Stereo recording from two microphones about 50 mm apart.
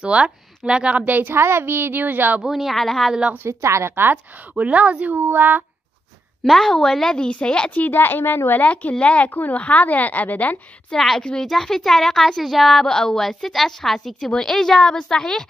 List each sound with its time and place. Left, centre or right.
0.0 s a woman's voice: right
1.0 s a sound: right
1.3 s a woman's voice: right
2.4 s speech: centre
3.4 s a woman's voice: right
3.9 s a woman's voice: right
4.6 s a woman's voice: right
5.2 s a sound: right
6.4 s speech: centre
7.2 s a woman's voice: centre
7.9 s speech: left
8.5 s a woman's voice: left
9.3 s a woman's voice: left
10.9 s speech: centre